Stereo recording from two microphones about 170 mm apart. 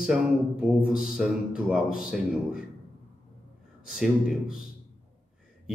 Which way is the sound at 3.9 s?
Centre (ahead or behind).